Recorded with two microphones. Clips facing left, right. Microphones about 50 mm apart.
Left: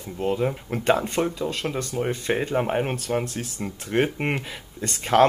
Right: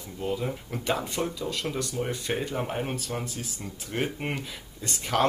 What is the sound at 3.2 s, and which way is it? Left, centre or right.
Speech, left.